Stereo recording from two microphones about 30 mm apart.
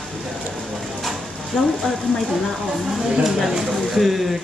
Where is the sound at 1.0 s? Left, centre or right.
Centre.